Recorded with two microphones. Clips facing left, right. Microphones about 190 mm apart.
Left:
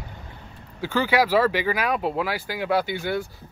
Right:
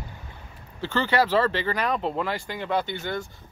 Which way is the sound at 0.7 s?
10° left (ahead or behind).